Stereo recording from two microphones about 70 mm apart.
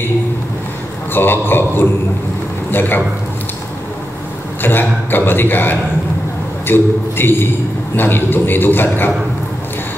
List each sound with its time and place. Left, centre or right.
1.1 s a man's voice: left
4.6 s a man's voice: left